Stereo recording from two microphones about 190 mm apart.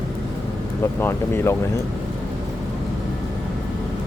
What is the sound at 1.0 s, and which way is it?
Speech, 10° left (ahead or behind).